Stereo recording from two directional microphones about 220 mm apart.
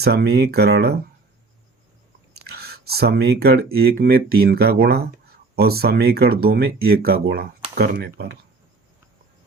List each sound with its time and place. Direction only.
0.0 s speech: 45° right (ahead or behind)
2.4 s whispering: 45° right (ahead or behind)
2.8 s speech: 45° right (ahead or behind)